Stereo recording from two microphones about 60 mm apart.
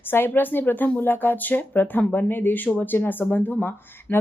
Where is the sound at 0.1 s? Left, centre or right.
Left.